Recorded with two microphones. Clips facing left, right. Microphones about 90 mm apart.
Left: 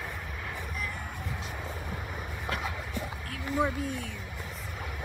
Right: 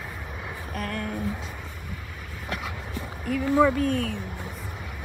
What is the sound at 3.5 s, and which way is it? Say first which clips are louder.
Speech: right 8 dB; 55° right (ahead or behind).